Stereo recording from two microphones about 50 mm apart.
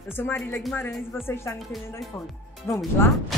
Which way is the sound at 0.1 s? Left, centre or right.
Left.